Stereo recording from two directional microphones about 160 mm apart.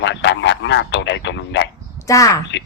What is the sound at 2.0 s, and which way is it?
Speech, 20° left (ahead or behind).